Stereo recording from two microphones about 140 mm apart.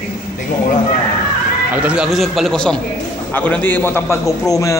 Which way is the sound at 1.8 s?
5° right (ahead or behind).